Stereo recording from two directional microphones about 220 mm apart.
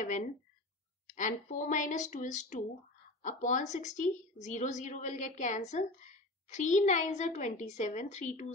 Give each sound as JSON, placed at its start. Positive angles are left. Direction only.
{"t": 1.0, "sound": "a woman's voice", "side_deg": 35}